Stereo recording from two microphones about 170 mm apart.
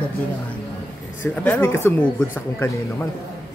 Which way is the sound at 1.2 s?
10° left (ahead or behind).